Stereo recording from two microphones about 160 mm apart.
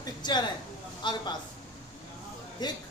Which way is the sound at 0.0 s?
25° left (ahead or behind).